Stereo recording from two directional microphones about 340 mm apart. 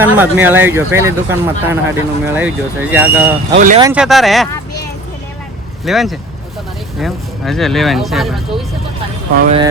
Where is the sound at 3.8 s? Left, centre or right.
Centre.